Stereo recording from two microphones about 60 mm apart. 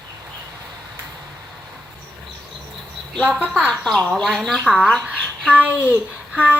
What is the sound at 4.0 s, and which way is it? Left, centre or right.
Speech, centre.